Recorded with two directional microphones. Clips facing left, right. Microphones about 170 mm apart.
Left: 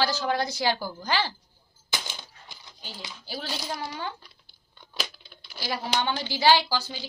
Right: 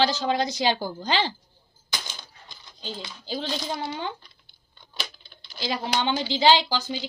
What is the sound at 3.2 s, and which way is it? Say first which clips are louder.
Speech: right 5 dB; 20° right (ahead or behind).